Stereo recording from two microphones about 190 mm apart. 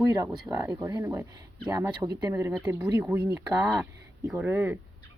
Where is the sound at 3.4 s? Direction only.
20° right (ahead or behind).